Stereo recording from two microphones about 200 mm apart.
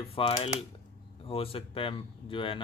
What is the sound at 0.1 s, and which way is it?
Speech, 30° left (ahead or behind).